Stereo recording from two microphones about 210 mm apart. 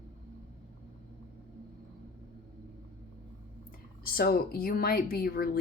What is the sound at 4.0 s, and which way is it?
Speech, 45° left (ahead or behind).